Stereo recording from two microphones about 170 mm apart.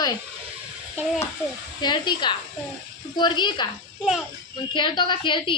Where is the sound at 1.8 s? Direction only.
25° left (ahead or behind).